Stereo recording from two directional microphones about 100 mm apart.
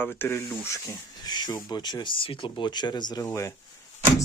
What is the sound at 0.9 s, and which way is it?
Speech, 40° left (ahead or behind).